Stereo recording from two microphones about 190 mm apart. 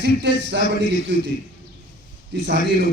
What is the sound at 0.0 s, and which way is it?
Speech, 65° right (ahead or behind).